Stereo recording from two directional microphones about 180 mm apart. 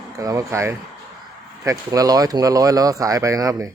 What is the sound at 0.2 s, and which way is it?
Speech, 20° right (ahead or behind).